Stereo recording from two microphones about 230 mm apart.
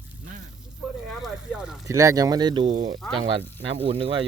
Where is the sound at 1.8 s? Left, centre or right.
Centre.